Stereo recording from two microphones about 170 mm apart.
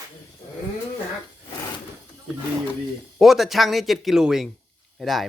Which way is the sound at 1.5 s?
25° left (ahead or behind).